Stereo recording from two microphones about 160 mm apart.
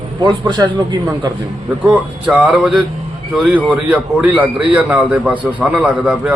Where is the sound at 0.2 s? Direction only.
25° right (ahead or behind).